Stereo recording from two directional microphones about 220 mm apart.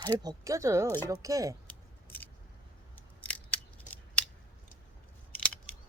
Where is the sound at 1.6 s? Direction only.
10° left (ahead or behind).